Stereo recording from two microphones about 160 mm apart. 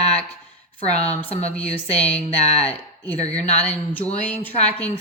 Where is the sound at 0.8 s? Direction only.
40° left (ahead or behind).